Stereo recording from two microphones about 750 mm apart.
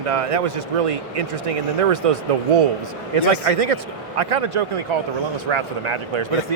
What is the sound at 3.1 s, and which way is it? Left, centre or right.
Speech, right.